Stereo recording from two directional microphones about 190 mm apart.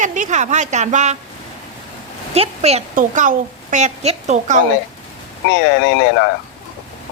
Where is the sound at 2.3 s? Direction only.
35° right (ahead or behind).